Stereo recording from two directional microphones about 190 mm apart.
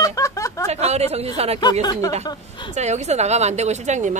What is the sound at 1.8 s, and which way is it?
Speech, 20° left (ahead or behind).